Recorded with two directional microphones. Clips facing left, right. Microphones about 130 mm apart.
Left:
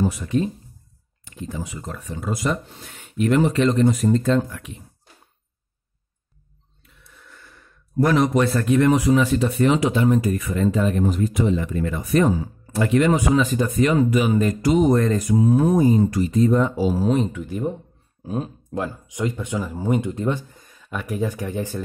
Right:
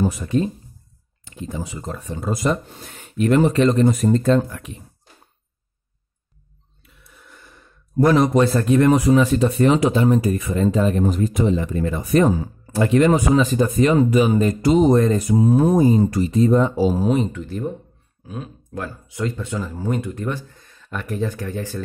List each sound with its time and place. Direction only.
0.0 s speech: 35° right (ahead or behind)
1.2 s speech: 25° right (ahead or behind); by 4.7 s 40° right (ahead or behind)
6.8 s gasp: 10° right (ahead or behind)
8.1 s speech: 35° right (ahead or behind)
12.7 s speech: 30° right (ahead or behind)
17.3 s speech: 10° left (ahead or behind)
18.2 s speech: 35° left (ahead or behind); by 21.8 s 15° left (ahead or behind)